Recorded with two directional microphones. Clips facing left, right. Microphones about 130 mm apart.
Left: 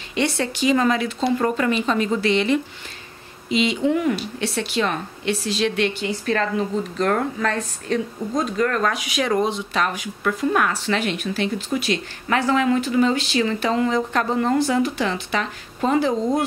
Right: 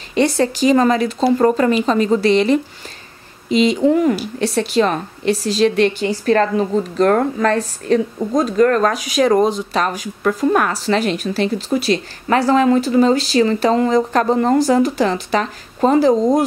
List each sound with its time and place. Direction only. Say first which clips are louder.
0.1 s a woman's voice: right 7 dB; 40° right (ahead or behind)